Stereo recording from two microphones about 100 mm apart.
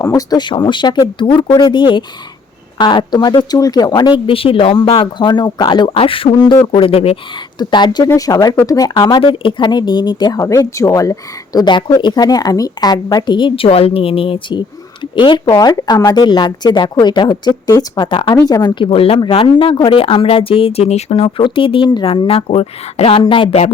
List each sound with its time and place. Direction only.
0.0 s speech: 35° left (ahead or behind)
4.3 s speech: 65° left (ahead or behind)
5.9 s a woman's voice: 65° left (ahead or behind)
7.6 s speech: 45° left (ahead or behind)
9.2 s speech: 60° left (ahead or behind)
13.7 s a woman's voice: 75° left (ahead or behind)
15.1 s speech: 50° left (ahead or behind)
15.6 s speech: 40° left (ahead or behind)
18.1 s speech: 55° left (ahead or behind)
18.4 s speech: 40° left (ahead or behind)
18.8 s speech: 70° left (ahead or behind)